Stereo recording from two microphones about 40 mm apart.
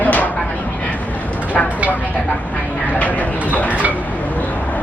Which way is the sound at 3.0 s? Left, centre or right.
Left.